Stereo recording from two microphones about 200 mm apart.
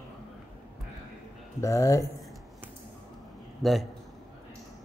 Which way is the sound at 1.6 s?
15° left (ahead or behind).